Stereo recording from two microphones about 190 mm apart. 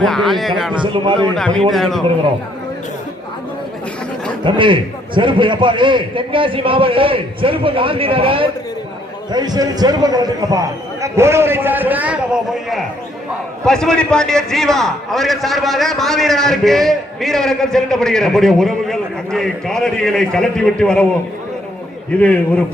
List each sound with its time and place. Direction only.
0.0 s a man's voice: centre (ahead or behind)
0.7 s a man's voice: 25° right (ahead or behind)
1.4 s a man's voice: 5° left (ahead or behind)
4.4 s a man's voice: 25° right (ahead or behind); by 21.1 s 5° left (ahead or behind)
22.1 s a man's voice: 5° left (ahead or behind)